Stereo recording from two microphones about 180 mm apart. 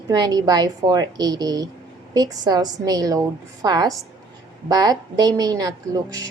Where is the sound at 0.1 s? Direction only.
20° right (ahead or behind).